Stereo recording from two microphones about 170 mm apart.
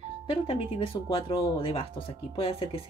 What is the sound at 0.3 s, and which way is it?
Speech, 30° left (ahead or behind).